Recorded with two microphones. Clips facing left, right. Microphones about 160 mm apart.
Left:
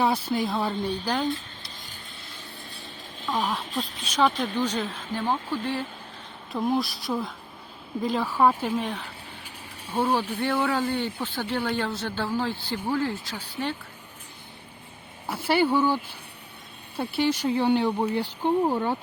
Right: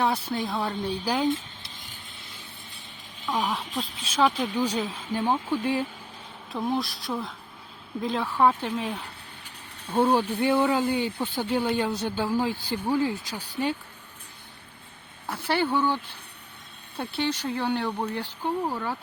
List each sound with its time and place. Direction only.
0.0 s speech: 5° left (ahead or behind)
1.0 s speech: 10° right (ahead or behind)
1.3 s a sound: 20° right (ahead or behind)
3.2 s speech: centre (ahead or behind)
6.5 s speech: 5° left (ahead or behind)
9.9 s speech: 15° right (ahead or behind)
15.3 s speech: 10° left (ahead or behind)
17.0 s speech: 10° left (ahead or behind)
18.4 s speech: 25° left (ahead or behind)